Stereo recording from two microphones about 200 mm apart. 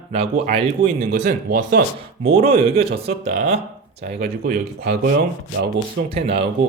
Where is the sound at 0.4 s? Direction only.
40° right (ahead or behind).